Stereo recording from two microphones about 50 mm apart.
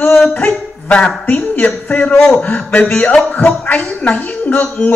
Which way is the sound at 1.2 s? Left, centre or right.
Left.